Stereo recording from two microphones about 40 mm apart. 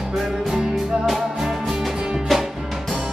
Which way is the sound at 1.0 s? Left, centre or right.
Centre.